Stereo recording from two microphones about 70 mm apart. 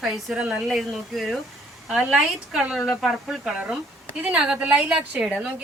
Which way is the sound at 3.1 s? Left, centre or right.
Centre.